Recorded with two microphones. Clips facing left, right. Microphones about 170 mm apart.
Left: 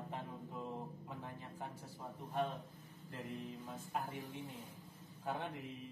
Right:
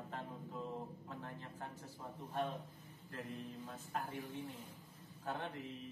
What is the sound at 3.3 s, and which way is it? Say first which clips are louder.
A man's voice: left 1 dB; 15° left (ahead or behind).